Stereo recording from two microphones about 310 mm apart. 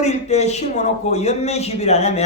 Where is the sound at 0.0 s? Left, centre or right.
Left.